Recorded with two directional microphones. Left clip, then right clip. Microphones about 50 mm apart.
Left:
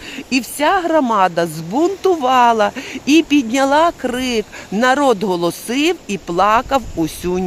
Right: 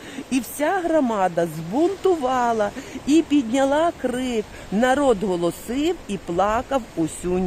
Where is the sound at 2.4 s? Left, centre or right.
Centre.